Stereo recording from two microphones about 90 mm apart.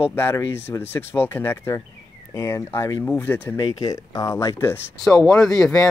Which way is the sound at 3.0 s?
20° left (ahead or behind).